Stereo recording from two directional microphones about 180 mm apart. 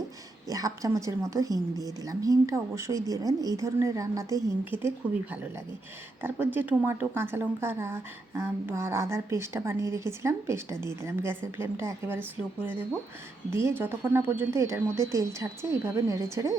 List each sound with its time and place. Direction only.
0.4 s speech: 20° right (ahead or behind)
13.5 s speech: 15° right (ahead or behind)